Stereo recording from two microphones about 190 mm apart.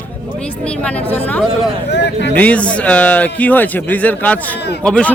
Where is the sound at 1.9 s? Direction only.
65° left (ahead or behind).